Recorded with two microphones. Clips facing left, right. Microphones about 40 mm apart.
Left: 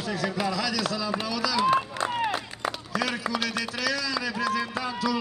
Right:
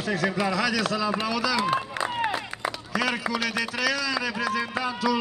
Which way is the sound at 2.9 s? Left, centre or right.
Right.